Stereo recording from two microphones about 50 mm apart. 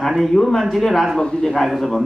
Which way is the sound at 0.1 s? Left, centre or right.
Centre.